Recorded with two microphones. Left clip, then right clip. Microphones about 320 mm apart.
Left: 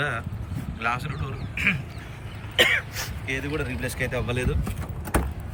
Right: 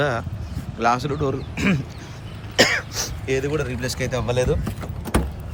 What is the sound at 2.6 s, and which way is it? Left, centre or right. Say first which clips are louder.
Cough: right 2 dB; centre.